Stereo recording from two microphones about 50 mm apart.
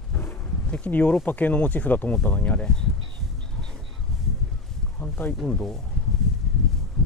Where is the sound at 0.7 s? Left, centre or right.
Left.